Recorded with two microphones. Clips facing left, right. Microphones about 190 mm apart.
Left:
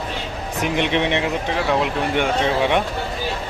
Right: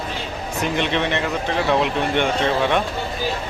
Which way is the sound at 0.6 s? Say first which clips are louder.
Left 2 dB; 15° left (ahead or behind).